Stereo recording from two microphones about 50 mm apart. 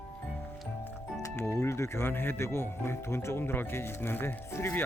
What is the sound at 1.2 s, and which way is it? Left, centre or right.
Music, left.